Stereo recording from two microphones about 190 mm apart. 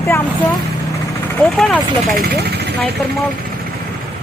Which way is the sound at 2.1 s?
55° right (ahead or behind).